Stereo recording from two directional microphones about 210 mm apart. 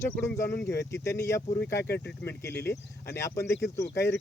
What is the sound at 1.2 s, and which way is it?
Speech, 15° left (ahead or behind).